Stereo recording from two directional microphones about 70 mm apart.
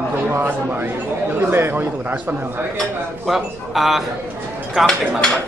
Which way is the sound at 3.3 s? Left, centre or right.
Centre.